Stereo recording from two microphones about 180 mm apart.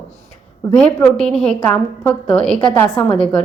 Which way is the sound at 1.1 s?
5° left (ahead or behind).